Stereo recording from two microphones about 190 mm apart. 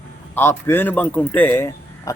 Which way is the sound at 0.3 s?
10° left (ahead or behind).